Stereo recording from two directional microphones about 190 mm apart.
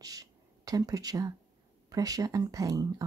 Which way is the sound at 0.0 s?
20° right (ahead or behind).